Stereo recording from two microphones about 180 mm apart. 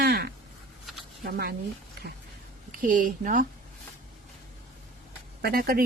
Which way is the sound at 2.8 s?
50° right (ahead or behind).